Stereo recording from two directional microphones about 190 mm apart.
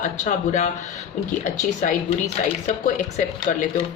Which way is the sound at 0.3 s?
40° left (ahead or behind).